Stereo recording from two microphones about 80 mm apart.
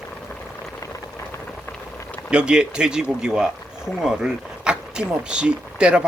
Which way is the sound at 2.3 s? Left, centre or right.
Centre.